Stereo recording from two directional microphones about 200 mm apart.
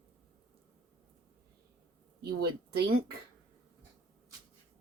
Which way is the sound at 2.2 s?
55° right (ahead or behind).